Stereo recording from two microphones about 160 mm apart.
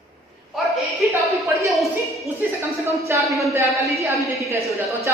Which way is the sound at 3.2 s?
Centre (ahead or behind).